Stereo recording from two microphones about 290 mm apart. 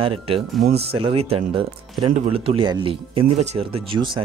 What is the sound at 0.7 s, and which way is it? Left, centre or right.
Speech, centre.